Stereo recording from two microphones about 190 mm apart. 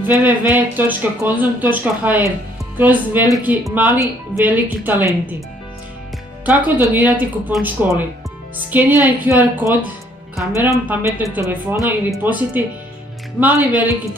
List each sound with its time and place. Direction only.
0.0 s speech: 10° right (ahead or behind)
6.4 s speech: 10° right (ahead or behind)